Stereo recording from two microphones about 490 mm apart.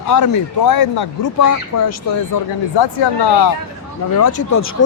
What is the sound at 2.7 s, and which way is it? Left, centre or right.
Speech, left.